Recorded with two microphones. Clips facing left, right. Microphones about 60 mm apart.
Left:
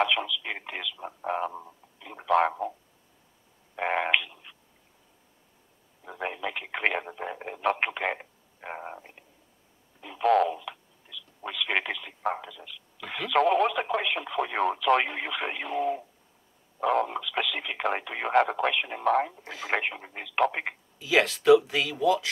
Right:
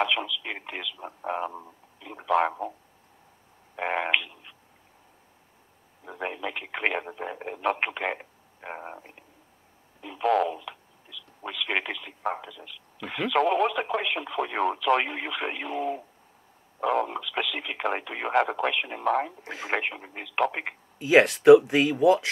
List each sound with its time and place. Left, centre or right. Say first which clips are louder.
0.0 s speech: left 1 dB; centre
3.7 s a sound: even; centre
6.0 s speech: even; centre
19.4 s speech: right 2 dB; right
19.7 s speech: even; centre
21.0 s speech: right 5 dB; right